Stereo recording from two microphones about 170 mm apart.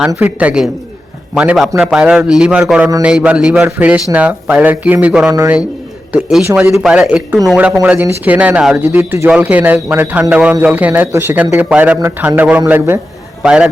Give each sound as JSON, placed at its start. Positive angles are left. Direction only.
{"t": 0.1, "sound": "a man's voice", "side_deg": -10}